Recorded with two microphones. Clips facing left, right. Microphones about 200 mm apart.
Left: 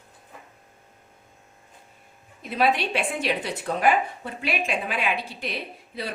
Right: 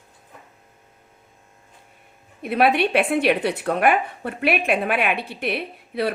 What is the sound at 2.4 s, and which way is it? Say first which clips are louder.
A woman's voice: right 5 dB; 60° right (ahead or behind).